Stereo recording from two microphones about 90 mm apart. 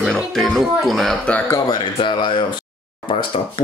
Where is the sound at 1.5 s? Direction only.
40° left (ahead or behind).